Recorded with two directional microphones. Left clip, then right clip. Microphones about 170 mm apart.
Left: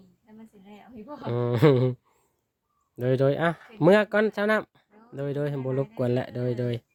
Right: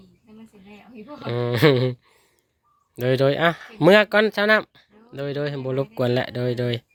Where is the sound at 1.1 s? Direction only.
10° left (ahead or behind).